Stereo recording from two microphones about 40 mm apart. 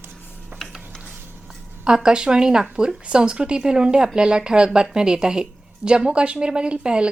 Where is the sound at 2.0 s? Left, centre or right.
Right.